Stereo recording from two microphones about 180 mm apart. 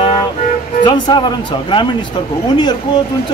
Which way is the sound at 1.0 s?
25° left (ahead or behind).